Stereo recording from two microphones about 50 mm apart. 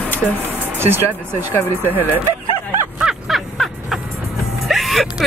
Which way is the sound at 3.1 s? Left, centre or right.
Centre.